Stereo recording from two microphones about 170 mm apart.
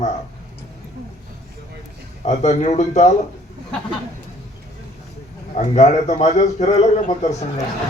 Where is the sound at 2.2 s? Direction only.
45° left (ahead or behind).